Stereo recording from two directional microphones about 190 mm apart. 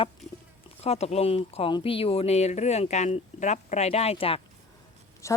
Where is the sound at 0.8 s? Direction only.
35° left (ahead or behind).